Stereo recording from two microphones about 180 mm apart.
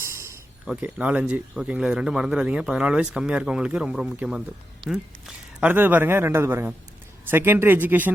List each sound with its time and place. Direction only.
0.0 s a sound: 15° right (ahead or behind)
0.6 s a man's voice: 5° right (ahead or behind)
5.5 s a man's voice: 10° right (ahead or behind)